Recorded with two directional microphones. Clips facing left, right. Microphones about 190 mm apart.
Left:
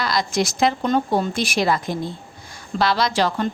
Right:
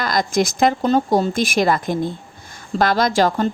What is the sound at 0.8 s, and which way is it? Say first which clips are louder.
A woman's voice: right 3 dB; 35° right (ahead or behind).